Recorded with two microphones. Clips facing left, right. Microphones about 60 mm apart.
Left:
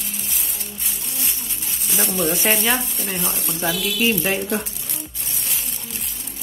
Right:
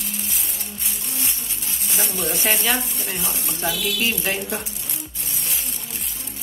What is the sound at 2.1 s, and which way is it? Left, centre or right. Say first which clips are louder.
Speech: left 4 dB; centre.